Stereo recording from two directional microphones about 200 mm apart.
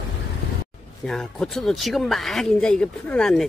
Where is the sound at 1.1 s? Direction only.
5° left (ahead or behind).